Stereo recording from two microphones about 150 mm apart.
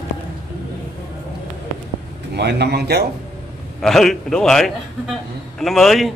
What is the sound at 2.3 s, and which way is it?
Speech, 90° right.